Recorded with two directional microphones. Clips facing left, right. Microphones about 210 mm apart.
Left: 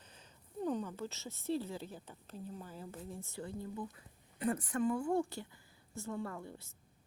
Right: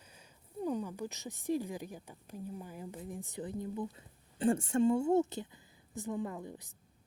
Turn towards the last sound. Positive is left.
turn(degrees=-15)  # may be behind; listen again after turning